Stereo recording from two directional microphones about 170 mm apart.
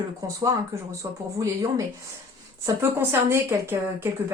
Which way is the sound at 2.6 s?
15° right (ahead or behind).